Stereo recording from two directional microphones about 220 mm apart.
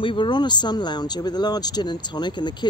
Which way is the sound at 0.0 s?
20° left (ahead or behind).